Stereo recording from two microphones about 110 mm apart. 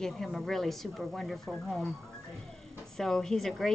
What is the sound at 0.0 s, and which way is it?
A woman's voice, centre (ahead or behind).